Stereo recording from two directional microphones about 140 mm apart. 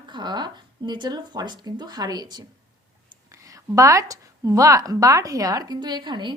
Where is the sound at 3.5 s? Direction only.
25° right (ahead or behind).